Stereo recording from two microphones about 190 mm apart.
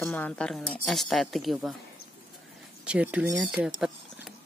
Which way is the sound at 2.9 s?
5° right (ahead or behind).